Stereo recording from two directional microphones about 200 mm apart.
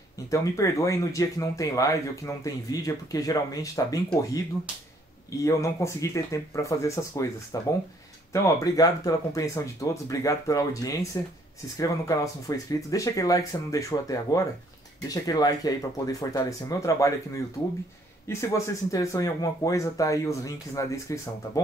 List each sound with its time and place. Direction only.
0.3 s speech: 15° left (ahead or behind)
5.4 s speech: 15° left (ahead or behind)
18.3 s speech: 15° left (ahead or behind)